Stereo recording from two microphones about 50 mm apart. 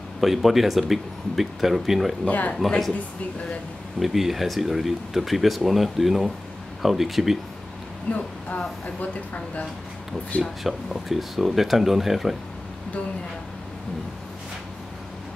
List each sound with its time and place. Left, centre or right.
0.2 s speech: centre
2.2 s speech: left
4.0 s speech: centre
8.1 s speech: left
10.4 s speech: centre